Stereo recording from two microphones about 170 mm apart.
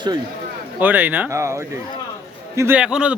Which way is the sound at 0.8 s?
10° right (ahead or behind).